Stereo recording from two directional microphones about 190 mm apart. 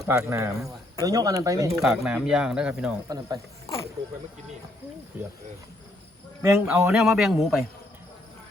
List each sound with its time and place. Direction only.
0.0 s speech: 15° right (ahead or behind)
1.8 s speech: 5° right (ahead or behind)
3.1 s speech: 20° right (ahead or behind)
6.4 s speech: 15° right (ahead or behind)
6.9 s speech: centre (ahead or behind)